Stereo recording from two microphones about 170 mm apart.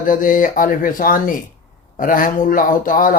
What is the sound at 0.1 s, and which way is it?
Speech, 55° left (ahead or behind).